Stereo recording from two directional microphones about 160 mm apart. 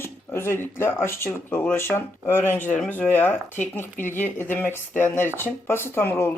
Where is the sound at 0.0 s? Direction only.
15° left (ahead or behind).